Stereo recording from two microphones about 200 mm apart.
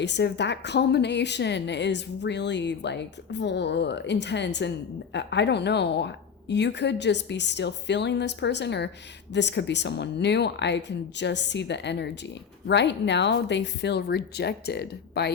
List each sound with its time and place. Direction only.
0.0 s a woman's voice: 60° left (ahead or behind)